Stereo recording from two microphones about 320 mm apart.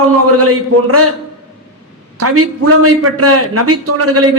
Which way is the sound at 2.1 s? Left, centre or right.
Right.